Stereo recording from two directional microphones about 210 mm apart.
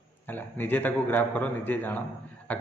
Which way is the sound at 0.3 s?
10° left (ahead or behind).